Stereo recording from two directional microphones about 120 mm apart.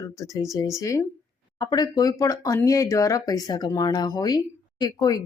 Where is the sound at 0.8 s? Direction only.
25° left (ahead or behind).